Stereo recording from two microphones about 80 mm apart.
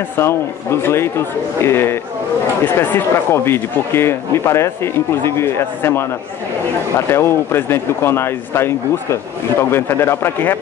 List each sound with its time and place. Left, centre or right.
0.2 s speech: left
7.1 s speech: left